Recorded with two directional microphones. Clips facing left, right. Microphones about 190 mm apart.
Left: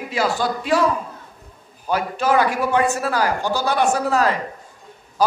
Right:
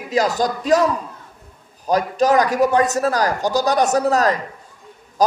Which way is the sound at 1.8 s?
40° right (ahead or behind).